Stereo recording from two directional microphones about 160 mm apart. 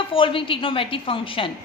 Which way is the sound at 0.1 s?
35° left (ahead or behind).